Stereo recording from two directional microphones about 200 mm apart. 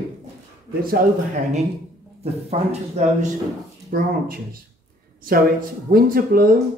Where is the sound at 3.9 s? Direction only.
50° right (ahead or behind).